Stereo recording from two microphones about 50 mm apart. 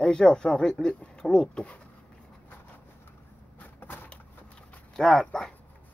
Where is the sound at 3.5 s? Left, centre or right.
Left.